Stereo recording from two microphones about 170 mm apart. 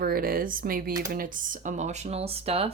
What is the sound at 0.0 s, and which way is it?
Speech, 60° right (ahead or behind).